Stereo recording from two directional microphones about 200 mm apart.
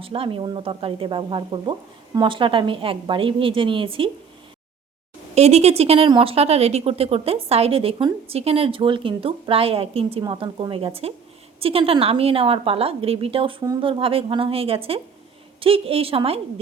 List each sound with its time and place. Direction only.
0.0 s speech: 25° right (ahead or behind)
5.3 s speech: 35° right (ahead or behind)